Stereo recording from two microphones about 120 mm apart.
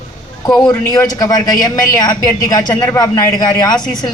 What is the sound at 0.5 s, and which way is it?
A man's voice, 30° left (ahead or behind).